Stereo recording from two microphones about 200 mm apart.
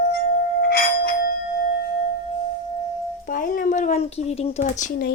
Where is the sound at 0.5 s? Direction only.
55° left (ahead or behind).